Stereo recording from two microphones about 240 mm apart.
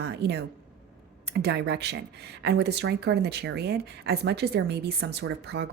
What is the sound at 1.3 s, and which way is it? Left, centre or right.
Speech, right.